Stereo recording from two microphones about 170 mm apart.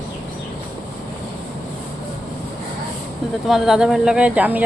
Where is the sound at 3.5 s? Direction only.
Centre (ahead or behind).